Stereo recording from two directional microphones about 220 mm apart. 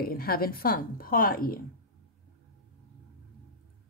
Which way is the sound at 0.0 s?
45° left (ahead or behind).